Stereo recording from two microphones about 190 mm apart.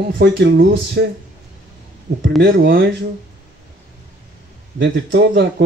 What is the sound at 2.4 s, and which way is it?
Speech, 55° right (ahead or behind).